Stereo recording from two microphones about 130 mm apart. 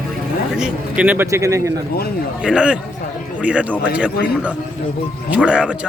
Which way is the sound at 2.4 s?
5° right (ahead or behind).